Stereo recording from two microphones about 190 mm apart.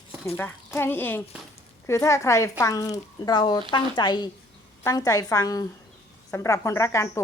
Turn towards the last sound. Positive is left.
turn(degrees=15)  # may be behind; listen again after turning